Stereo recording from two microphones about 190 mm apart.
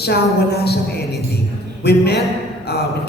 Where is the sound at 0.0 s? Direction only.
60° left (ahead or behind).